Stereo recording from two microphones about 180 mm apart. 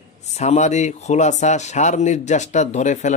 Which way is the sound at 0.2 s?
40° left (ahead or behind).